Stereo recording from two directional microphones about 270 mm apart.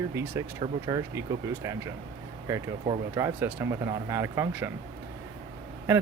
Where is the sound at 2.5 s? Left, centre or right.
Centre.